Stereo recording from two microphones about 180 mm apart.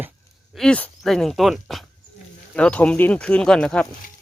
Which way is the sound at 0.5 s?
5° left (ahead or behind).